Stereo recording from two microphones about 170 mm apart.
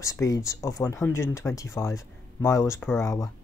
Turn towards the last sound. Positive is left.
turn(degrees=20)  # may be behind; listen again after turning